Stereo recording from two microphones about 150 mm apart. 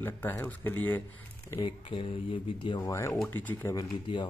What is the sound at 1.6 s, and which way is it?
Speech, 35° left (ahead or behind).